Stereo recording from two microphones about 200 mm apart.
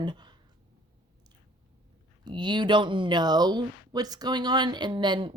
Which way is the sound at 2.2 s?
20° right (ahead or behind).